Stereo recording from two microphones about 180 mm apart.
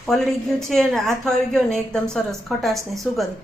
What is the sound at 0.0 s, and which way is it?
A woman's voice, centre (ahead or behind).